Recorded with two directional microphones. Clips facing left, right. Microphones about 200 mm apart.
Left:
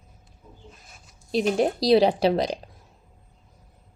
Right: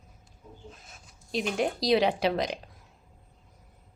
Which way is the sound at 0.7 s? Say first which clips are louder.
Right 1 dB; centre (ahead or behind).